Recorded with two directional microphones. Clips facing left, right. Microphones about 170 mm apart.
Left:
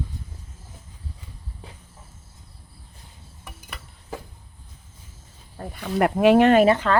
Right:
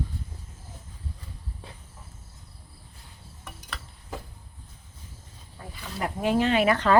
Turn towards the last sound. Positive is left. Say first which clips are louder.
# right 1 dB
turn(degrees=0)  # may be behind; listen again after turning